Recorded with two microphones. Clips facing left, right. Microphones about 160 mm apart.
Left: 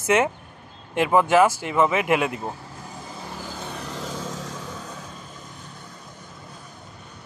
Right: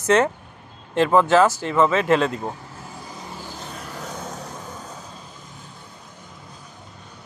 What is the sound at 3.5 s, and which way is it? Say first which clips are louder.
Vehicle: left 2 dB; 80° left.